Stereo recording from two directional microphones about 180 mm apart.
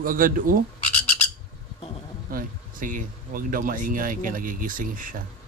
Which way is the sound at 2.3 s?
50° right (ahead or behind).